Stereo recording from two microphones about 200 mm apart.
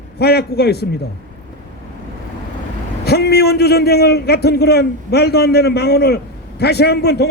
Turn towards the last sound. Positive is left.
turn(degrees=55)  # may be behind; listen again after turning